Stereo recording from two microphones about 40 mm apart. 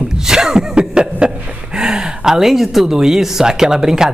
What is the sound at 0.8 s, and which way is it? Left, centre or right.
Speech, right.